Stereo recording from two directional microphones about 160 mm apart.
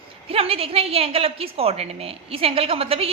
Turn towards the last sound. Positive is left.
turn(degrees=-35)  # may be behind; listen again after turning